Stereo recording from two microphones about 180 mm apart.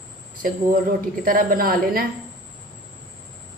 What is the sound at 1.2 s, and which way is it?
Speech, 50° right (ahead or behind).